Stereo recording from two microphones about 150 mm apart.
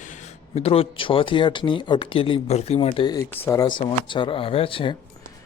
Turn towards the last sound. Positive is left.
turn(degrees=35)  # may be behind; listen again after turning